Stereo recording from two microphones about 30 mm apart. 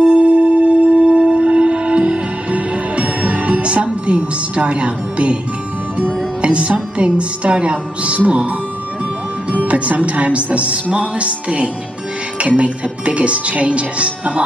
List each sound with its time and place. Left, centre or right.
0.0 s music: right
2.5 s music: right
6.4 s music: right
6.7 s speech: right
9.5 s speech: right